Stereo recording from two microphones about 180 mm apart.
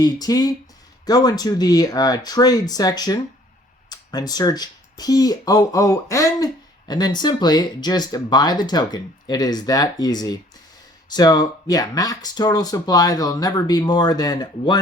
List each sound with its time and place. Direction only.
0.0 s speech: 20° left (ahead or behind)